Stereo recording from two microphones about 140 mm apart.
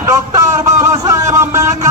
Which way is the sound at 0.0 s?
20° right (ahead or behind).